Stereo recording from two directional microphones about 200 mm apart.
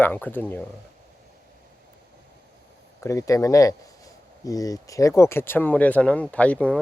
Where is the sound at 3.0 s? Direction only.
15° left (ahead or behind).